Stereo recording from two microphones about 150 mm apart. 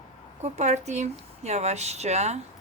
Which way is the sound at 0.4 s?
50° right (ahead or behind).